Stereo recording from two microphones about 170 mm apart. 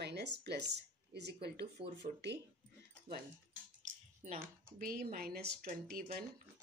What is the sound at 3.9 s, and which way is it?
Speech, 45° right (ahead or behind).